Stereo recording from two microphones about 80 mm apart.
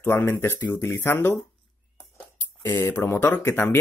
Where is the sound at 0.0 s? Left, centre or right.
Left.